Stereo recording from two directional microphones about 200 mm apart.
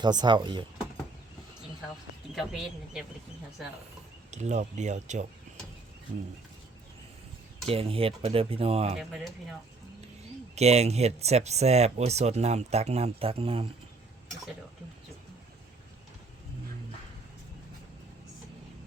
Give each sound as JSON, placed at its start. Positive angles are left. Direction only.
{"t": 0.0, "sound": "speech", "side_deg": -20}
{"t": 2.3, "sound": "speech", "side_deg": 0}
{"t": 4.3, "sound": "speech", "side_deg": -35}
{"t": 7.7, "sound": "speech", "side_deg": -30}
{"t": 9.0, "sound": "speech", "side_deg": 0}
{"t": 10.5, "sound": "speech", "side_deg": -30}